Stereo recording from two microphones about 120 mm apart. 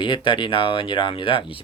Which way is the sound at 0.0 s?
45° left (ahead or behind).